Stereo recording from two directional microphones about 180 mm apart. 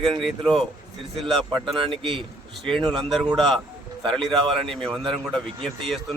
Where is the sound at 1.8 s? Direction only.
30° right (ahead or behind).